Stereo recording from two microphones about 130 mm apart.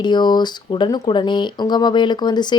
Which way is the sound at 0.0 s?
35° left (ahead or behind).